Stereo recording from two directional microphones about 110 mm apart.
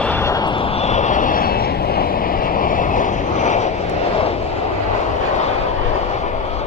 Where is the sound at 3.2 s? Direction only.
90° left; by 4.4 s 65° left (ahead or behind).